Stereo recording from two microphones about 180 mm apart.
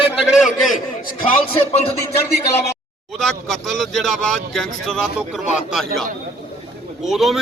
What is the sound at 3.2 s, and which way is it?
Speech, centre (ahead or behind).